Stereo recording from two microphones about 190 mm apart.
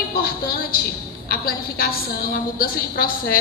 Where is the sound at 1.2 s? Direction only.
50° left (ahead or behind).